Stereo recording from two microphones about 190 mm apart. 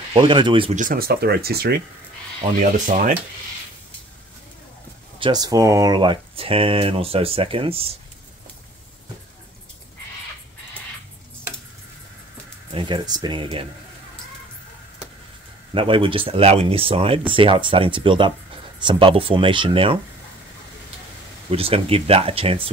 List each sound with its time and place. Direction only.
0.1 s speech: 25° right (ahead or behind)
0.7 s speech: 50° right (ahead or behind)
2.6 s speech: 45° right (ahead or behind)
5.2 s speech: 20° right (ahead or behind)
12.7 s speech: 25° right (ahead or behind)
15.7 s speech: 25° right (ahead or behind)
21.5 s speech: 30° right (ahead or behind)